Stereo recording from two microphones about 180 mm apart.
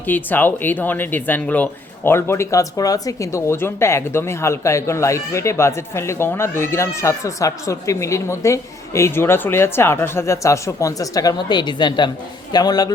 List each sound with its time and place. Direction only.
0.1 s speech: 10° left (ahead or behind)